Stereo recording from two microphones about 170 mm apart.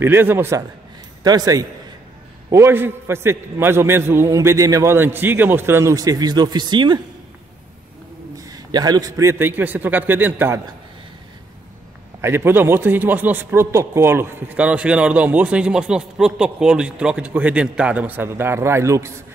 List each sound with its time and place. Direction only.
0.0 s a man's voice: 15° right (ahead or behind)
8.4 s a man's voice: 20° right (ahead or behind)
12.2 s a man's voice: 15° right (ahead or behind)